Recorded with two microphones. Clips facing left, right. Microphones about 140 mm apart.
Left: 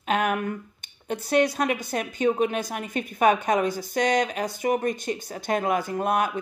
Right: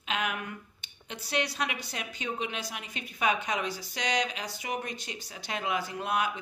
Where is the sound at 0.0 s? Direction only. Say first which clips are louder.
Left 9 dB; 50° left (ahead or behind).